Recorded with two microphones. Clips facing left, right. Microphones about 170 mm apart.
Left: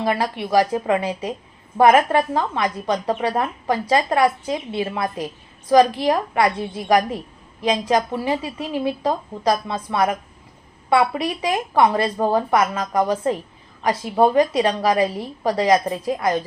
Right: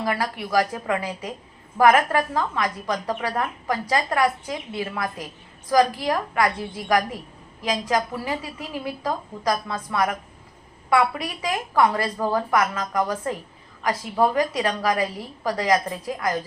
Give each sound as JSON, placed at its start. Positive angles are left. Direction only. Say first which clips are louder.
{"t": 0.0, "sound": "speech", "louder": "left 4 dB", "side_deg": 25}